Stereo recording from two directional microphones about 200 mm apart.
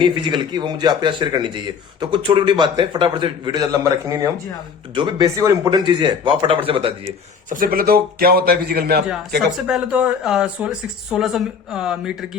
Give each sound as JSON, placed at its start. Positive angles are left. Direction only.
{"t": 0.0, "sound": "a man's voice", "side_deg": -25}
{"t": 7.5, "sound": "a man's voice", "side_deg": -45}
{"t": 9.6, "sound": "speech", "side_deg": -5}